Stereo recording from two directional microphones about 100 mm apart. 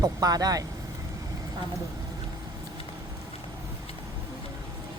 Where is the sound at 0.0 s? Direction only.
40° right (ahead or behind).